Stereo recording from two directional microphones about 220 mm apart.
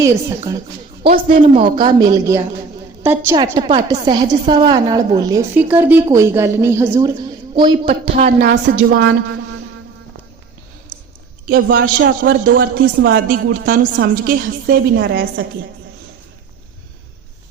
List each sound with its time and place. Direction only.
0.0 s a woman's voice: 15° right (ahead or behind)
1.0 s speech: 40° right (ahead or behind)
1.5 s a woman's voice: 25° right (ahead or behind)
3.3 s a woman's voice: 20° right (ahead or behind)
8.2 s speech: 40° right (ahead or behind); by 9.1 s 55° right (ahead or behind)
11.4 s speech: 45° right (ahead or behind)